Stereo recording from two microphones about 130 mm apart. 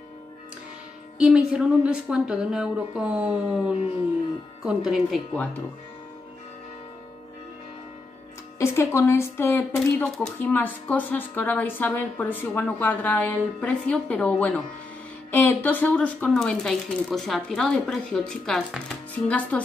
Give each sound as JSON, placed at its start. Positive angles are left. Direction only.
{"t": 1.1, "sound": "a woman's voice", "side_deg": -10}
{"t": 8.5, "sound": "speech", "side_deg": 20}